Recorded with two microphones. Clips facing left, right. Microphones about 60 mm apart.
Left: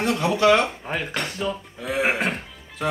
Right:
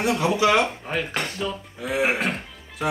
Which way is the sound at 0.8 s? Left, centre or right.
Centre.